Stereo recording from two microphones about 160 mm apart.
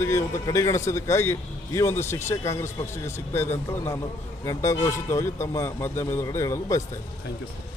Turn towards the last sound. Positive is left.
turn(degrees=20)  # may be behind; listen again after turning